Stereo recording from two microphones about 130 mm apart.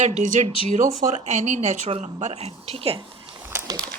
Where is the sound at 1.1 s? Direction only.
65° right (ahead or behind); by 3.0 s 45° right (ahead or behind).